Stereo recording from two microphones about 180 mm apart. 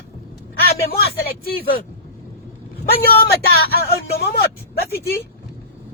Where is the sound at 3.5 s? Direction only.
60° left (ahead or behind).